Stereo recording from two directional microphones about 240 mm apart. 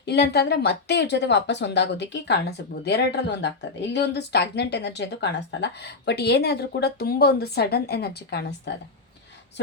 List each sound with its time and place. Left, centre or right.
0.0 s speech: left